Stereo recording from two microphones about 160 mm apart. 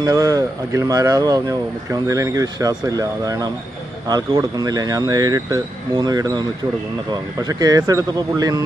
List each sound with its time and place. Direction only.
0.0 s speech: 20° right (ahead or behind)